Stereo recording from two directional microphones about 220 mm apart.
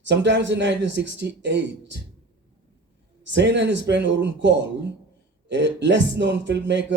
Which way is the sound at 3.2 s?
55° right (ahead or behind).